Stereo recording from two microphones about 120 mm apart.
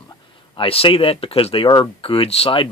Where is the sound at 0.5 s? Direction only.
50° left (ahead or behind).